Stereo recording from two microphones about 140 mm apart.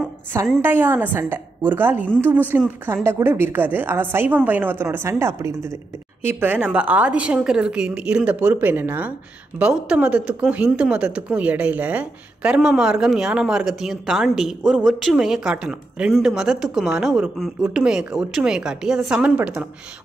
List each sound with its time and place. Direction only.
0.6 s a woman's voice: 15° right (ahead or behind)